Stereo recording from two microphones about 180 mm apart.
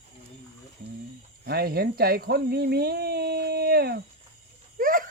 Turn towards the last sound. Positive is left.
turn(degrees=-50)  # may be behind; listen again after turning